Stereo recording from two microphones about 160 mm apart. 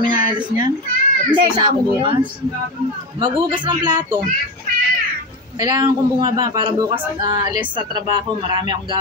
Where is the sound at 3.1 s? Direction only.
30° right (ahead or behind).